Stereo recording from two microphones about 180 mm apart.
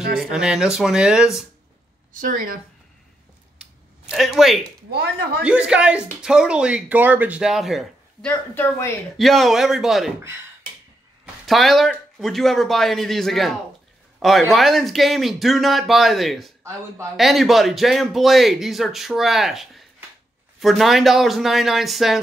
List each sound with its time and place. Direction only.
0.2 s speech: 5° right (ahead or behind)
2.1 s a woman's voice: 50° right (ahead or behind)
4.1 s speech: centre (ahead or behind)
8.3 s speech: 10° left (ahead or behind)
9.1 s speech: centre (ahead or behind)
11.4 s speech: centre (ahead or behind)